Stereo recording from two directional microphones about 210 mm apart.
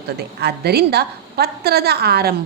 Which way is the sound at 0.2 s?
50° right (ahead or behind).